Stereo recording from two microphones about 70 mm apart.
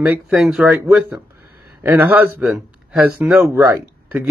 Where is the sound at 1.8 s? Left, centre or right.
Right.